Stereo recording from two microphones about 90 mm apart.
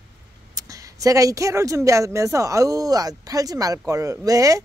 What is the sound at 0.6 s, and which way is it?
Speech, 40° right (ahead or behind).